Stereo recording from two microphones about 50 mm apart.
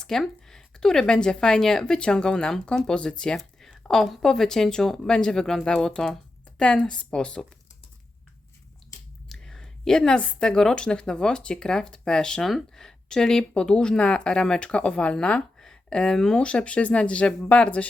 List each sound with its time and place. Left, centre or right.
0.0 s speech: centre
9.4 s a sound: centre
10.4 s speech: centre